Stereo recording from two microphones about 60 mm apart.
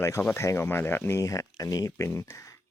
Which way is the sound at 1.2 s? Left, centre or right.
Left.